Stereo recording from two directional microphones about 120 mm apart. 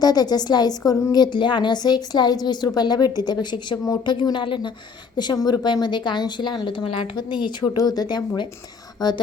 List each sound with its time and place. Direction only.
0.0 s a woman's voice: 35° left (ahead or behind)